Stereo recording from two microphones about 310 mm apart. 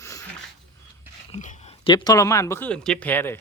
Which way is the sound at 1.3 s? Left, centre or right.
Left.